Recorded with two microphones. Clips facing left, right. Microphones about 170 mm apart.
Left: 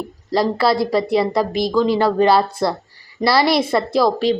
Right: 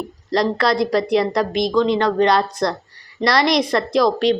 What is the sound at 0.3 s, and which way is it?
A woman's voice, 5° left (ahead or behind).